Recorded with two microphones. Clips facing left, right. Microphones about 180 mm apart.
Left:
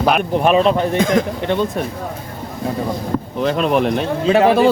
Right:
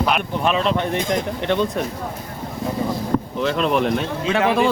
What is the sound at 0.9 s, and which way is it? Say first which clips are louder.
Speech: left 6 dB; 90° left.